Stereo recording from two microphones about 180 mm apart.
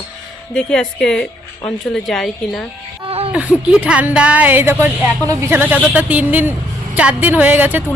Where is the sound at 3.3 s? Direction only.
5° right (ahead or behind).